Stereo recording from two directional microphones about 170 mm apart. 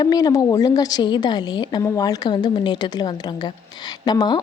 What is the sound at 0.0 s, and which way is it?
A woman's voice, 20° left (ahead or behind).